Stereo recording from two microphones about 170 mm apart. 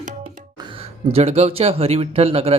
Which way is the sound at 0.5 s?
30° right (ahead or behind).